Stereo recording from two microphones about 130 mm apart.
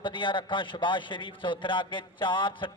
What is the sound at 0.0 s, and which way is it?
A man's voice, 40° left (ahead or behind).